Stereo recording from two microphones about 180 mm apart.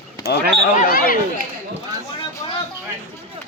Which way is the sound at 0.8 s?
50° left (ahead or behind).